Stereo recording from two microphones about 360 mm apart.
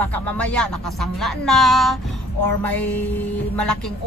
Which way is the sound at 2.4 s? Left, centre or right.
Left.